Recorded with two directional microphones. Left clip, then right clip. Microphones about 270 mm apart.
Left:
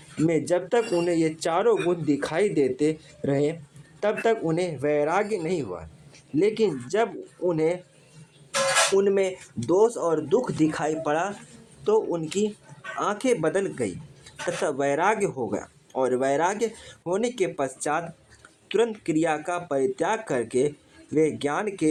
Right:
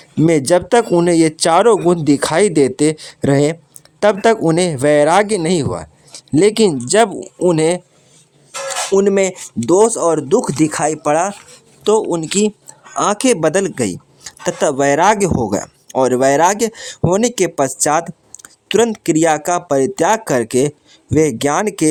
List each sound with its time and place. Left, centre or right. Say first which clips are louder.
0.3 s speech: right 11 dB; right
9.0 s speech: right 9 dB; right